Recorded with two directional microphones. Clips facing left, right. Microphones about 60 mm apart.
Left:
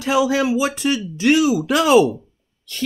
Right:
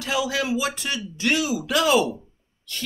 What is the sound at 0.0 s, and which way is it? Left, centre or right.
Speech, left.